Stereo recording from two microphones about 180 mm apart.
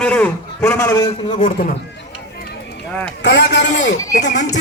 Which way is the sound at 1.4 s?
50° left (ahead or behind).